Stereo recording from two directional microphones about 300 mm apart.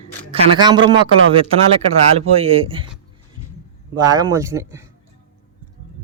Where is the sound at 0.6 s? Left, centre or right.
Centre.